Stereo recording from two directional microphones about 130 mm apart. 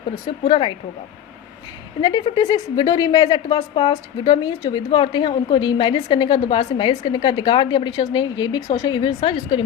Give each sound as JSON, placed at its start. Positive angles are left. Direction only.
{"t": 0.4, "sound": "a woman's voice", "side_deg": 40}
{"t": 2.0, "sound": "a woman's voice", "side_deg": 35}